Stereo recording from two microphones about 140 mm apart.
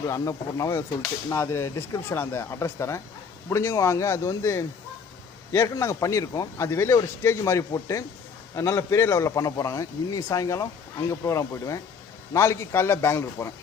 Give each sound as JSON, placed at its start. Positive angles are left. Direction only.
{"t": 0.0, "sound": "a man's voice", "side_deg": 20}